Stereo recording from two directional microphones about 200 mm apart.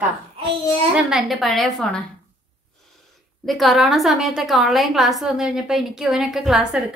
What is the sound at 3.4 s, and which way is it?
A woman's voice, centre (ahead or behind).